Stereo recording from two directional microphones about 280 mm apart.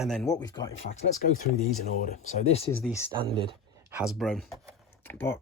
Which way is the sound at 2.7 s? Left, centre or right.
Centre.